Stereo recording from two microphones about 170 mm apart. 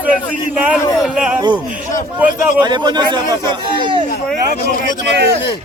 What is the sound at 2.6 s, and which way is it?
Speech, 25° right (ahead or behind).